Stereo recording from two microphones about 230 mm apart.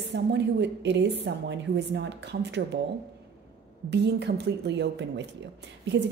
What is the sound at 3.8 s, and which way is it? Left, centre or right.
A woman's voice, right.